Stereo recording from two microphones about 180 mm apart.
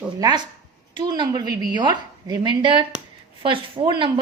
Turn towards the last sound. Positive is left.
turn(degrees=-25)  # may be behind; listen again after turning